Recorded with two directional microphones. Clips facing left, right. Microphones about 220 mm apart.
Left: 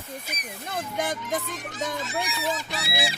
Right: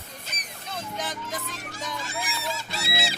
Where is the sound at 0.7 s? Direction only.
55° left (ahead or behind).